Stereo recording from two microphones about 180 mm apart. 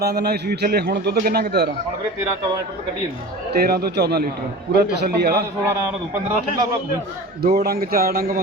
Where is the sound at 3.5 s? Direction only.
60° right (ahead or behind).